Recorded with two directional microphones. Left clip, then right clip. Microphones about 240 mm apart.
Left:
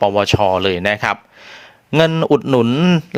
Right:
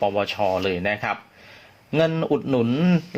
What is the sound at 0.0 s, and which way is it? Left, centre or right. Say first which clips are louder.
Speech: left 8 dB; left.